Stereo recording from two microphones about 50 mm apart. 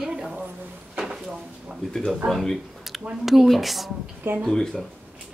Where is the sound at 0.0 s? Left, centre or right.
Centre.